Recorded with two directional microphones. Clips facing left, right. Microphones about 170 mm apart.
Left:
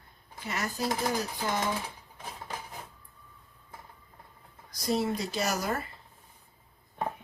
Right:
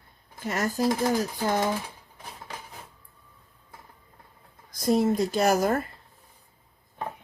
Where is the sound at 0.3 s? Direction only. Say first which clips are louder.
Right 6 dB; 45° right (ahead or behind).